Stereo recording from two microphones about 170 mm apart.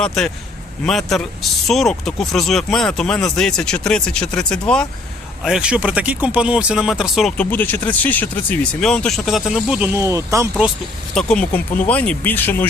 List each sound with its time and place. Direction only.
0.9 s speech: centre (ahead or behind)
7.5 s speech: 10° left (ahead or behind); by 10.5 s 15° right (ahead or behind)
11.1 s speech: 5° left (ahead or behind)